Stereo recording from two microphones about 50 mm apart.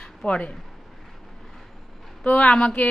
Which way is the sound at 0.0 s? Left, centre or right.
Left.